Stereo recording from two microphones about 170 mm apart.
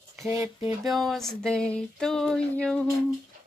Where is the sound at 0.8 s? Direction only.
Centre (ahead or behind).